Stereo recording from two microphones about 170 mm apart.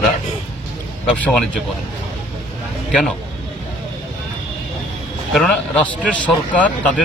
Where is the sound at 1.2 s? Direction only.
5° left (ahead or behind).